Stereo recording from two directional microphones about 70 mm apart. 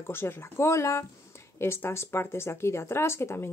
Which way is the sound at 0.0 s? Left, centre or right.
Left.